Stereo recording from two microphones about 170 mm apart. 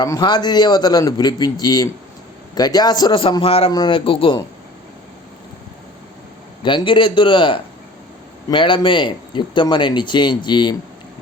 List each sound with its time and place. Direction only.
0.0 s speech: 25° left (ahead or behind)
6.6 s speech: 30° left (ahead or behind)